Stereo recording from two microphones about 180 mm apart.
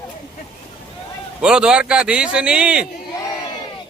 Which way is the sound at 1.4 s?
5° right (ahead or behind).